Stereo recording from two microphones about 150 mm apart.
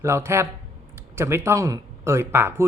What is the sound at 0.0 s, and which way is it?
A man's voice, 15° right (ahead or behind).